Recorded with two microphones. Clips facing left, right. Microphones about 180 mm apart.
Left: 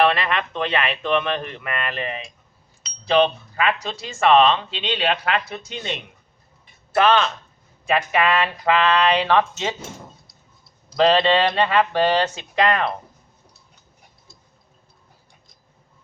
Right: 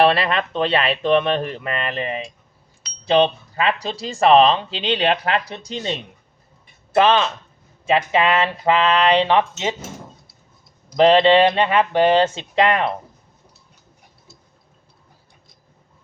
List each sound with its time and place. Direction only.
0.0 s speech: 35° right (ahead or behind)
6.9 s speech: 20° right (ahead or behind)
10.8 s speech: 20° right (ahead or behind)